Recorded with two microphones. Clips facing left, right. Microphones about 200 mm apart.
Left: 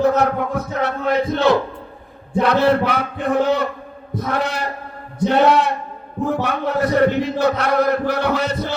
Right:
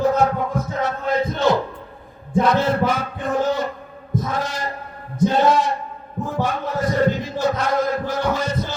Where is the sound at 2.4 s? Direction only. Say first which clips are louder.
Left 4 dB; 65° left (ahead or behind).